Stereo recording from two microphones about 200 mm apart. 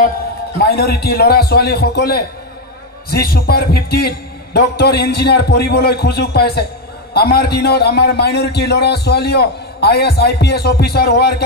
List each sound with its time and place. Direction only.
0.7 s a man's voice: 50° left (ahead or behind)